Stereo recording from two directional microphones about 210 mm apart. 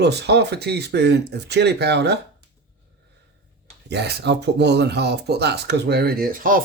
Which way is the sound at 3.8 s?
50° right (ahead or behind).